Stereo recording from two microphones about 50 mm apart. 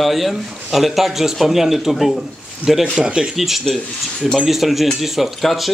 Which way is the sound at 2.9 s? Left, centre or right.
Centre.